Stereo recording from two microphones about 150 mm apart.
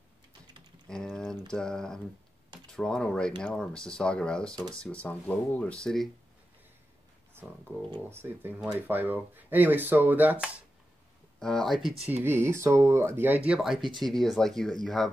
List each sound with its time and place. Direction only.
0.8 s typing: 5° left (ahead or behind)
1.5 s speech: 5° left (ahead or behind)
8.1 s speech: 15° right (ahead or behind)
11.3 s speech: 5° left (ahead or behind)
12.1 s speech: 15° right (ahead or behind)
13.5 s speech: centre (ahead or behind)